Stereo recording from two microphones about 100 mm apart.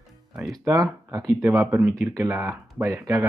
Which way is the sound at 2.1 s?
30° right (ahead or behind).